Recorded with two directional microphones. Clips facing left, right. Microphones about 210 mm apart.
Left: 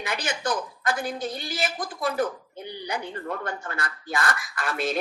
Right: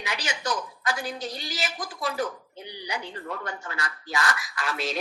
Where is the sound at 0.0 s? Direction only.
55° left (ahead or behind).